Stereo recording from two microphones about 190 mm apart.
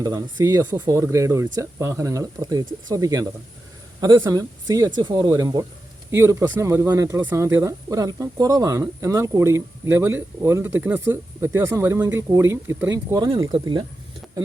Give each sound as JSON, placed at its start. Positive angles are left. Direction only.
{"t": 0.0, "sound": "speech", "side_deg": -20}
{"t": 13.1, "sound": "speech", "side_deg": -20}